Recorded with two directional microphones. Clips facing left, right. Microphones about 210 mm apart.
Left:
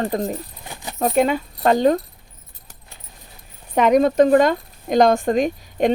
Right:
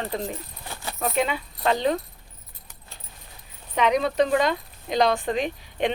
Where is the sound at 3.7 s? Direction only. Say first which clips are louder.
Left 7 dB; 45° left (ahead or behind).